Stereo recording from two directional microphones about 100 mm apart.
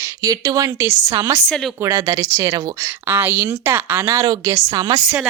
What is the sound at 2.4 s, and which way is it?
Speech, 35° right (ahead or behind).